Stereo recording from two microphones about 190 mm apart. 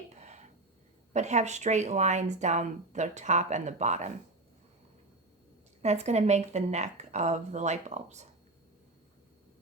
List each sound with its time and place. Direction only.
0.2 s a sound: 40° right (ahead or behind)
1.1 s speech: 35° right (ahead or behind)
5.8 s speech: 35° right (ahead or behind)